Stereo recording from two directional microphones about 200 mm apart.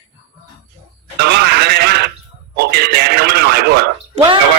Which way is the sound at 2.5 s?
50° right (ahead or behind).